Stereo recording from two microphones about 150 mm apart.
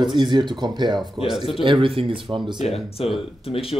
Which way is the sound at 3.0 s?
40° left (ahead or behind).